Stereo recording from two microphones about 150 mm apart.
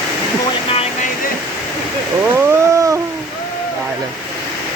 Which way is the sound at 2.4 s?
20° right (ahead or behind).